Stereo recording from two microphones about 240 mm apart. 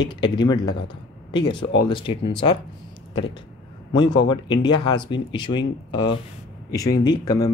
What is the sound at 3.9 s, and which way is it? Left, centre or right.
Speech, centre.